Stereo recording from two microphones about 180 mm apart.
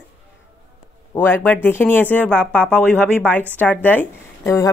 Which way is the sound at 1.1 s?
10° left (ahead or behind).